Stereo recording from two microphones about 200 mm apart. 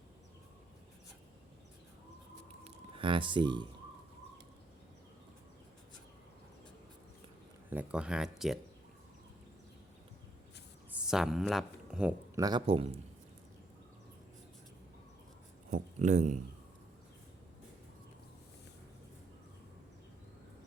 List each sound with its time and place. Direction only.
2.6 s speech: 25° right (ahead or behind)
7.7 s speech: 5° right (ahead or behind)
11.0 s speech: centre (ahead or behind)
12.4 s speech: 20° right (ahead or behind)
15.7 s speech: 35° right (ahead or behind)